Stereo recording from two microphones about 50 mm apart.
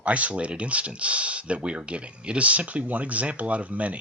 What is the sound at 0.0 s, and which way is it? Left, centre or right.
Speech, right.